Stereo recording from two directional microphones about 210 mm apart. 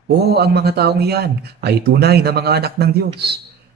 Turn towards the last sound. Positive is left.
turn(degrees=-50)  # may be behind; listen again after turning